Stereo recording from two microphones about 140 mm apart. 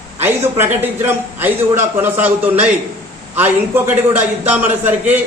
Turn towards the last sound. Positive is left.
turn(degrees=-15)  # may be behind; listen again after turning